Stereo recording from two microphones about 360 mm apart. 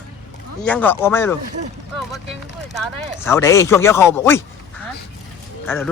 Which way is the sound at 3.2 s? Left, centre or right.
Centre.